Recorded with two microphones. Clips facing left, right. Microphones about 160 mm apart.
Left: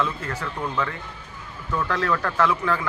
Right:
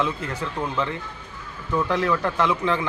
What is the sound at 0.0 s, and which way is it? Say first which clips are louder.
A man's voice: right 1 dB; 20° right (ahead or behind).